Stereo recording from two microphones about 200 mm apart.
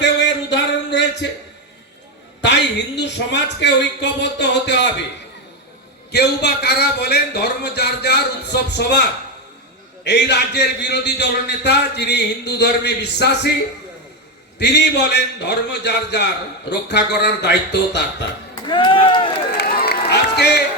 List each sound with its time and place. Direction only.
0.0 s a sound: 60° left (ahead or behind)
2.4 s a man's voice: 60° left (ahead or behind)
6.1 s a man's voice: 55° left (ahead or behind)
14.6 s a man's voice: 60° left (ahead or behind)
18.7 s speech: 25° left (ahead or behind)
19.5 s crowd: 55° left (ahead or behind)